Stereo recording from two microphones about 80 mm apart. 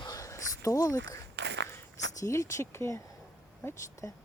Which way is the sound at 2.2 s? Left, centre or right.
Left.